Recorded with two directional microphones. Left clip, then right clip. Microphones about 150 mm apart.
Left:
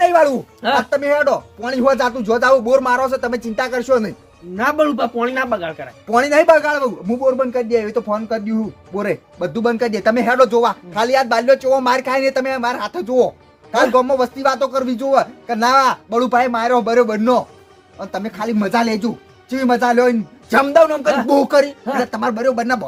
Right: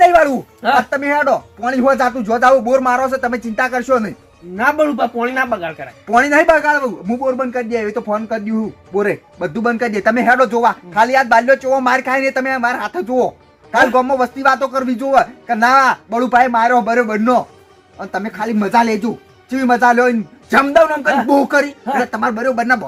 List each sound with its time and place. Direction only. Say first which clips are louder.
0.1 s music: right 2 dB; 50° left (ahead or behind)
0.6 s speech: right 3 dB; 30° left (ahead or behind)
0.9 s speech: even; 45° left (ahead or behind)
4.5 s speech: right 2 dB; 25° left (ahead or behind)
6.1 s speech: right 1 dB; 55° left (ahead or behind)